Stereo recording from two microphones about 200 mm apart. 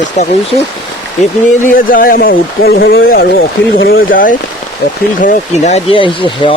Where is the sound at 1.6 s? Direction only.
45° left (ahead or behind).